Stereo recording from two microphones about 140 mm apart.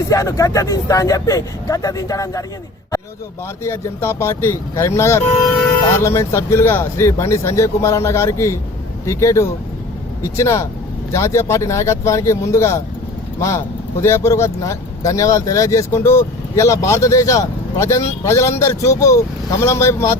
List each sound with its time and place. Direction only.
0.1 s speech: 25° left (ahead or behind)
3.6 s speech: 20° left (ahead or behind)
14.0 s speech: 20° left (ahead or behind)